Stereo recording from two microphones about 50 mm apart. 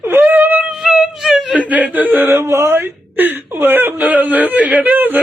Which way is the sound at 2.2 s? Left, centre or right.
Right.